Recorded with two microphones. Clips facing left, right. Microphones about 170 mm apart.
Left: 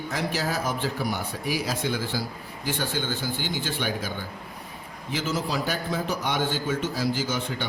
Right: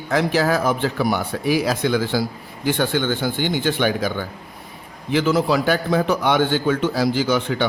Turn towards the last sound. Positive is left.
turn(degrees=-70)  # may be behind; listen again after turning